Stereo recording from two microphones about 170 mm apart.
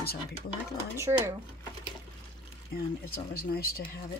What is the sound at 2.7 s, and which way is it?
Speech, 65° left (ahead or behind).